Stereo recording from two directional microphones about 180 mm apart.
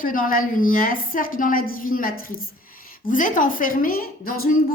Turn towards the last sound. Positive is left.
turn(degrees=55)  # may be behind; listen again after turning